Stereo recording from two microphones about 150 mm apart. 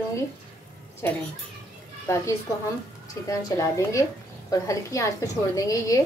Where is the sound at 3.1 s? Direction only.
25° left (ahead or behind).